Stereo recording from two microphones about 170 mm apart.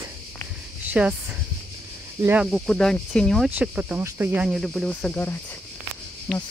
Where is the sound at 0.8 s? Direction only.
10° right (ahead or behind).